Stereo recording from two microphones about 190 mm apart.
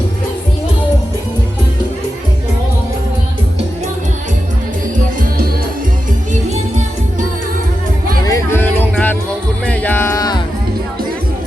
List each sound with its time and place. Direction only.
8.2 s music: 15° left (ahead or behind)